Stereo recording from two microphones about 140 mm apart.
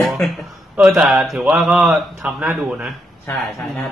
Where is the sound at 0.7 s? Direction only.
5° right (ahead or behind).